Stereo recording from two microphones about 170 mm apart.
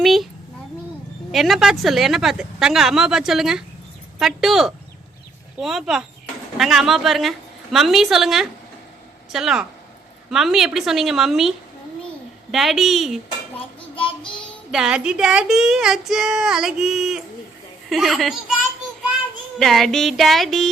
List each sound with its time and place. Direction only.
0.0 s a child's voice: centre (ahead or behind)
1.3 s female singing: centre (ahead or behind)
13.9 s child singing: 30° left (ahead or behind)
14.7 s female singing: 5° right (ahead or behind)
19.5 s female singing: centre (ahead or behind)